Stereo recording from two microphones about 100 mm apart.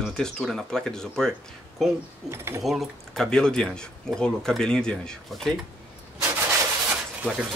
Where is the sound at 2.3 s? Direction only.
25° right (ahead or behind).